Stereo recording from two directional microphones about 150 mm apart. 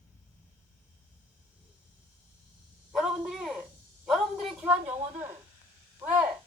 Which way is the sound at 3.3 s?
5° right (ahead or behind).